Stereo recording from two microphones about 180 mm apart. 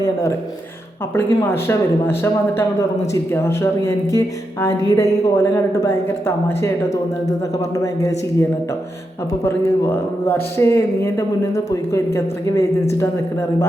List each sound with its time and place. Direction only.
0.0 s a woman's voice: 15° left (ahead or behind)